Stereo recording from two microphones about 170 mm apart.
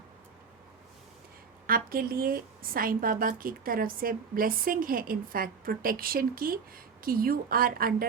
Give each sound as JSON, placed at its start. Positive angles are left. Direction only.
{"t": 1.6, "sound": "a woman's voice", "side_deg": -55}